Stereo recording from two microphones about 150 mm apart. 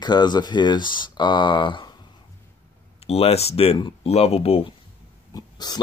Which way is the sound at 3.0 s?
40° left (ahead or behind).